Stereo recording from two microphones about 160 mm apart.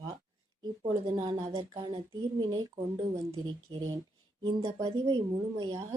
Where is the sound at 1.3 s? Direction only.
30° right (ahead or behind).